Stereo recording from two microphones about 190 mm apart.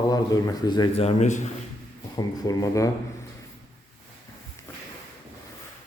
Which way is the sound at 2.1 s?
20° left (ahead or behind).